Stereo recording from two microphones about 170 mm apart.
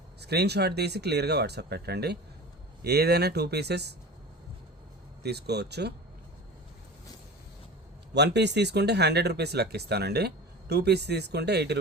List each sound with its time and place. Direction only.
0.2 s speech: 75° right (ahead or behind)
5.2 s speech: 75° right (ahead or behind)
8.1 s speech: 85° right